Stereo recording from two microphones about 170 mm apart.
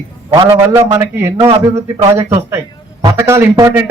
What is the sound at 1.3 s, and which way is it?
Speech, 30° right (ahead or behind).